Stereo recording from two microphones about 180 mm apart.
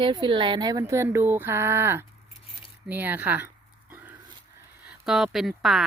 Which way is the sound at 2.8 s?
10° right (ahead or behind).